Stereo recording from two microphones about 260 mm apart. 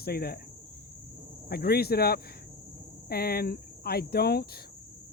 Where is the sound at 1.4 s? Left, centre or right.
Left.